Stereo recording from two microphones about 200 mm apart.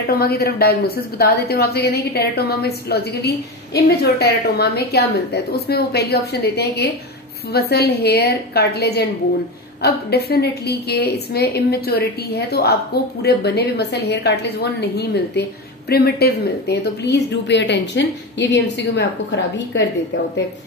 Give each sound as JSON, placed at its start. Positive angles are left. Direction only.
{"t": 0.2, "sound": "a woman's voice", "side_deg": 50}